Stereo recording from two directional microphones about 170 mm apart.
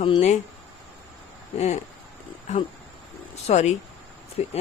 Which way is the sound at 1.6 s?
40° left (ahead or behind).